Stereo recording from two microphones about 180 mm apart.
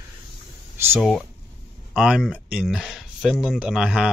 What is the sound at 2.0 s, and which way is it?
Speech, 5° right (ahead or behind).